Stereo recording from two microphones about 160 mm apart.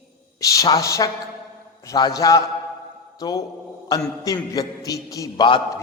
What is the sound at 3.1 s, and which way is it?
Mantra, 25° left (ahead or behind).